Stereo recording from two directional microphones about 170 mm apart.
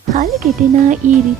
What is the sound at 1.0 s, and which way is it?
Speech, 45° right (ahead or behind).